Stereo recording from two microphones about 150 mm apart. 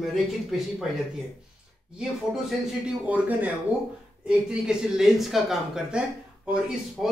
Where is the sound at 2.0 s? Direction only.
5° right (ahead or behind).